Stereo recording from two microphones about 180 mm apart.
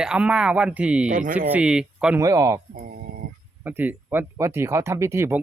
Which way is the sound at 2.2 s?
20° right (ahead or behind).